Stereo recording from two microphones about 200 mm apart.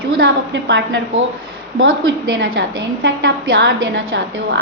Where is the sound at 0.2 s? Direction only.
60° right (ahead or behind).